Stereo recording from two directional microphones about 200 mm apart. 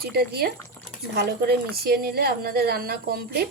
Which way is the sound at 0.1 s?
50° right (ahead or behind).